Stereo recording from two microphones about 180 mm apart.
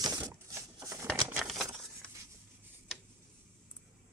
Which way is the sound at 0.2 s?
15° right (ahead or behind).